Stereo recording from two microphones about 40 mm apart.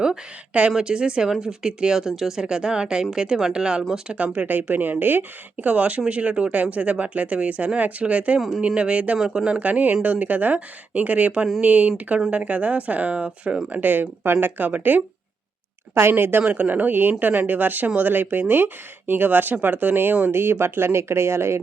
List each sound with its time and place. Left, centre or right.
0.8 s a woman's voice: right
2.4 s a woman's voice: right
4.3 s a woman's voice: right
9.1 s a woman's voice: centre
9.6 s a woman's voice: right
13.7 s speech: right
16.0 s speech: right
16.4 s a woman's voice: right
16.9 s speech: right
20.3 s speech: right